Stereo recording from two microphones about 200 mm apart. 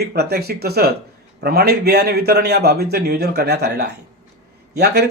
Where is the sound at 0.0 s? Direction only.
55° right (ahead or behind).